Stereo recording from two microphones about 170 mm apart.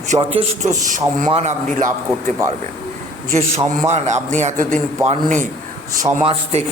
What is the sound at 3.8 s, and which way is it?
A man's voice, 45° right (ahead or behind).